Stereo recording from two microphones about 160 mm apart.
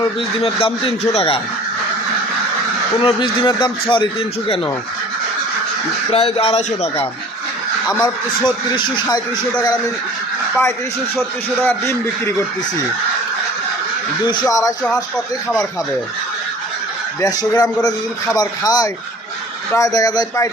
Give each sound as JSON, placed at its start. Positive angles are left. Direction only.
{"t": 0.3, "sound": "a man's voice", "side_deg": 35}
{"t": 3.0, "sound": "a man's voice", "side_deg": 30}
{"t": 6.1, "sound": "a man's voice", "side_deg": 40}
{"t": 8.0, "sound": "speech", "side_deg": 30}
{"t": 11.6, "sound": "speech", "side_deg": 15}
{"t": 14.3, "sound": "speech", "side_deg": 25}
{"t": 17.2, "sound": "speech", "side_deg": 25}